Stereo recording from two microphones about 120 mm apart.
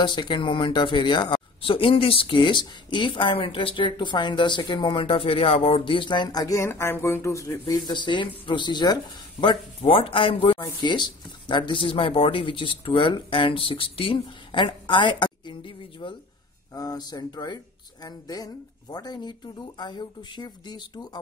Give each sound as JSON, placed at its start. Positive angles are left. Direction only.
{"t": 0.0, "sound": "speech", "side_deg": 40}
{"t": 7.6, "sound": "speech", "side_deg": 35}
{"t": 16.7, "sound": "speech", "side_deg": 30}